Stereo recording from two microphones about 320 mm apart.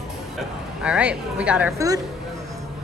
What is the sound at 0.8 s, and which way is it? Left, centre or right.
Speech, centre.